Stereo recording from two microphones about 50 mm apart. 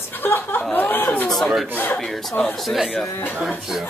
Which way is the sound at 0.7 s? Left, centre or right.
Left.